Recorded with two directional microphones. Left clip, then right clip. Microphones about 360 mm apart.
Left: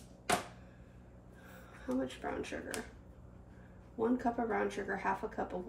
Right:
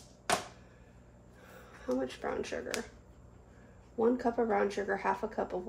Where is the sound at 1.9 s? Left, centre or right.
Centre.